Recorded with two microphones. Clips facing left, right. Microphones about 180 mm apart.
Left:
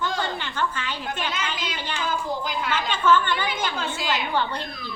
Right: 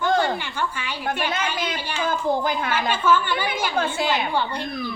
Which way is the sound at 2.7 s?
10° right (ahead or behind).